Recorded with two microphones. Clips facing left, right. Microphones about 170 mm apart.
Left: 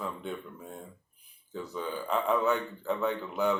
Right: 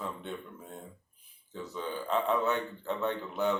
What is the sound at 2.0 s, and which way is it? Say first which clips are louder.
A man's voice: left 2 dB; centre (ahead or behind).